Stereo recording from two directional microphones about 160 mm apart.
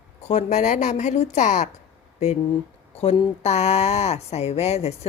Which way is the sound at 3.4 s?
45° left (ahead or behind).